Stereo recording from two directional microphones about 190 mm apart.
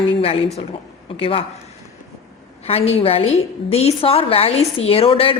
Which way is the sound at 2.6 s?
30° left (ahead or behind).